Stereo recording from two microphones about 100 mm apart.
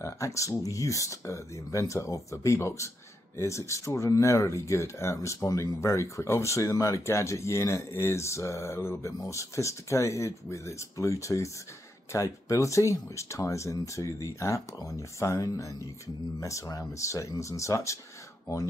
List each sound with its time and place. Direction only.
0.0 s speech: 30° left (ahead or behind)